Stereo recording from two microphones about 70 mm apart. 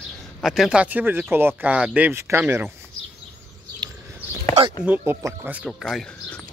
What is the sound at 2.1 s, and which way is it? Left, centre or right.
Speech, right.